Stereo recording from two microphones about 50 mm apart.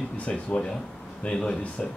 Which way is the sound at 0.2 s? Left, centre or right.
Left.